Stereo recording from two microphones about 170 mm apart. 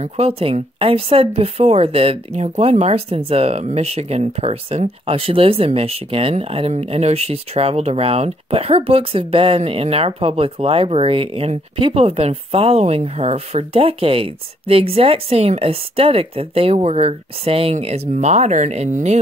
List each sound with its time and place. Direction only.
0.0 s speech: 35° right (ahead or behind)